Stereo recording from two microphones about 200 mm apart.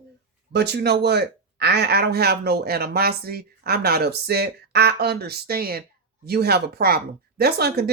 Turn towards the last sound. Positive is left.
turn(degrees=-55)  # may be behind; listen again after turning